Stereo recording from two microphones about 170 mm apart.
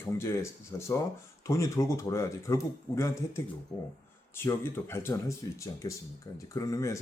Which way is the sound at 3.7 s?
5° left (ahead or behind).